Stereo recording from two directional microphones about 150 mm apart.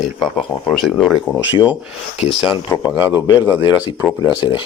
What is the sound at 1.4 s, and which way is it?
Speech, 10° right (ahead or behind).